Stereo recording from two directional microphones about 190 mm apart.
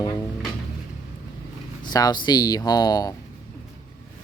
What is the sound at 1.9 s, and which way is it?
Speech, 20° left (ahead or behind).